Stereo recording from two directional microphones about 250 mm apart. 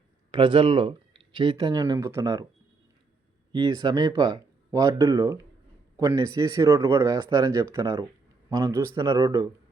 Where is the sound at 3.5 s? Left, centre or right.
Centre.